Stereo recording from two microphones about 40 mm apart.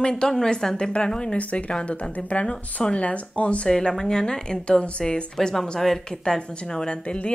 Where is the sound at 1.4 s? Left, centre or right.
Left.